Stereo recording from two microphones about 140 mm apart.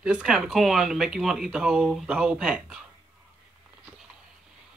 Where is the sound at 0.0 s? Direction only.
5° right (ahead or behind).